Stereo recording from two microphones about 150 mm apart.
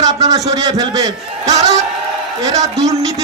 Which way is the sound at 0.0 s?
25° right (ahead or behind).